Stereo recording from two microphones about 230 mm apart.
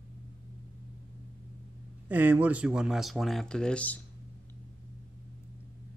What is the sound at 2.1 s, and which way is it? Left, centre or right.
Speech, centre.